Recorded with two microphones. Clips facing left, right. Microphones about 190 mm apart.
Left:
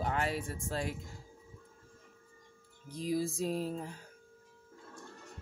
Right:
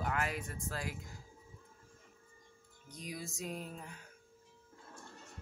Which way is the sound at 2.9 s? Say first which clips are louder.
Left 12 dB; 30° left (ahead or behind).